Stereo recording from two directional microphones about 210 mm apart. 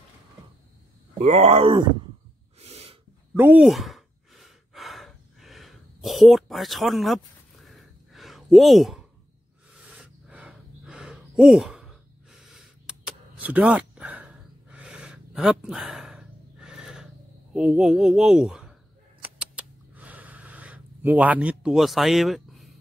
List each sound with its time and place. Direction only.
1.1 s groan: 30° right (ahead or behind)
2.6 s snort: 30° right (ahead or behind)
3.3 s sigh: 5° right (ahead or behind)
7.6 s a sound: centre (ahead or behind)
9.8 s gasp: 5° right (ahead or behind)
17.6 s speech: 5° right (ahead or behind)
19.2 s a sound: 5° right (ahead or behind)